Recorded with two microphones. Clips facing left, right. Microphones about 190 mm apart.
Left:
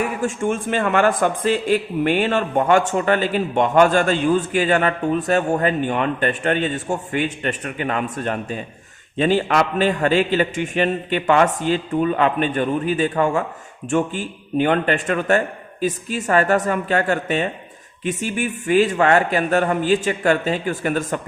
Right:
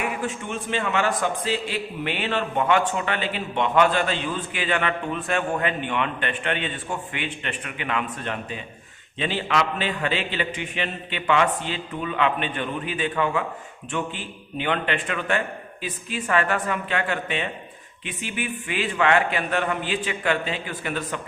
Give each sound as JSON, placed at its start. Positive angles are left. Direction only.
{"t": 0.0, "sound": "a man's voice", "side_deg": 45}